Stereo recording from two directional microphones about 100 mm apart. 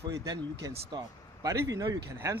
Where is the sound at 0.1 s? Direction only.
35° right (ahead or behind).